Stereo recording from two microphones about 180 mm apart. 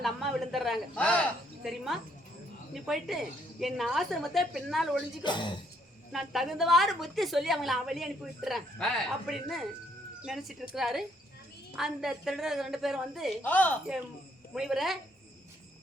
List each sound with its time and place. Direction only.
0.0 s a woman's voice: centre (ahead or behind)
5.2 s speech: 25° left (ahead or behind)
6.1 s a woman's voice: centre (ahead or behind)
13.4 s speech: 10° left (ahead or behind)
14.5 s a woman's voice: centre (ahead or behind)